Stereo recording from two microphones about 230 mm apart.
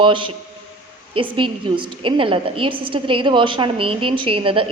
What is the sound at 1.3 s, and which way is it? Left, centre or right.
A woman's voice, right.